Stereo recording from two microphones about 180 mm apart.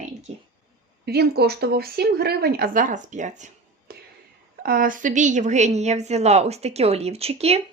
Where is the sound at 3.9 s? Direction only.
55° right (ahead or behind).